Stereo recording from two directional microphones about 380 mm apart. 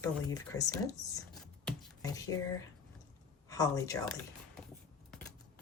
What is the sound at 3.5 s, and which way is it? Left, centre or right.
Speech, centre.